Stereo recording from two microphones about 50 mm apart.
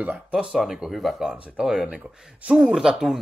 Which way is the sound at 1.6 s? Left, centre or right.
Centre.